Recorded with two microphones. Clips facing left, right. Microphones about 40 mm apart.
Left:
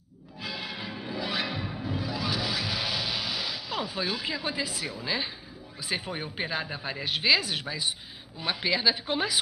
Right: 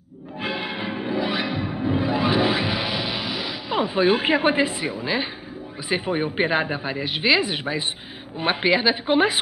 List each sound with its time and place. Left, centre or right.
0.4 s music: right; by 1.9 s centre
1.9 s music: right
5.9 s speech: right
6.8 s speech: centre; by 9.4 s right